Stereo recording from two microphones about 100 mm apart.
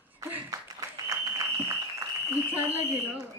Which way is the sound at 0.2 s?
30° right (ahead or behind).